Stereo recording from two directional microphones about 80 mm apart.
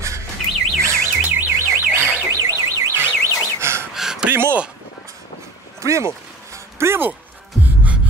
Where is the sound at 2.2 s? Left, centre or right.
Right.